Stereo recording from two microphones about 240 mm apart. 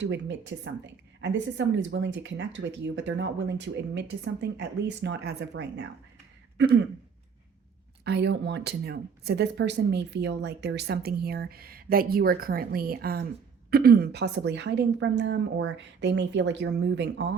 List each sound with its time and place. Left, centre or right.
0.0 s speech: right
8.0 s speech: right